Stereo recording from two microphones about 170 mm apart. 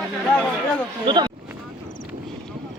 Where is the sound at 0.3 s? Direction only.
10° left (ahead or behind).